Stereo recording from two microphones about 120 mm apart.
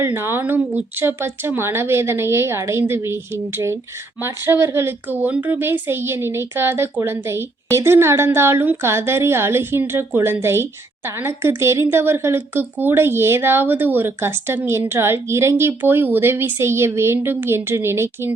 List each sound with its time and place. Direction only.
0.0 s a woman's voice: 20° right (ahead or behind)